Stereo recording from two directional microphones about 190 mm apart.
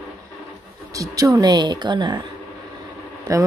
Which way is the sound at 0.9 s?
20° right (ahead or behind).